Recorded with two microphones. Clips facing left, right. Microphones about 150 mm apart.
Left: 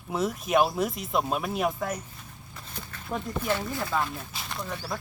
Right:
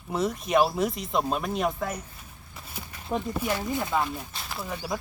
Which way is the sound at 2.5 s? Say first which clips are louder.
Even; 10° right (ahead or behind).